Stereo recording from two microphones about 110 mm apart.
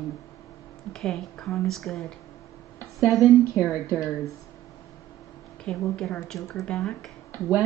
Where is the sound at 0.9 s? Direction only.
5° left (ahead or behind).